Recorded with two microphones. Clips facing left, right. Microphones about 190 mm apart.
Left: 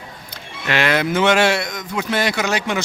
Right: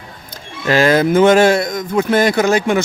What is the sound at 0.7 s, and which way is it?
Speech, 40° right (ahead or behind).